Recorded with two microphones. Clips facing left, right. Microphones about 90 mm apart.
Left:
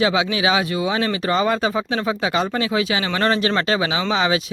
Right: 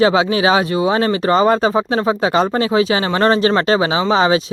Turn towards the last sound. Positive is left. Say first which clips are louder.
# right 6 dB
turn(degrees=-35)  # may be behind; listen again after turning